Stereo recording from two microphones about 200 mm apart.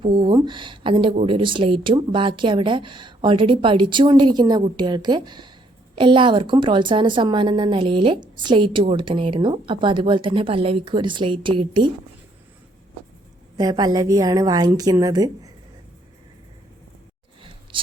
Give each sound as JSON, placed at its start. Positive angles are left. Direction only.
{"t": 0.0, "sound": "a woman's voice", "side_deg": -25}
{"t": 13.6, "sound": "a woman's voice", "side_deg": -20}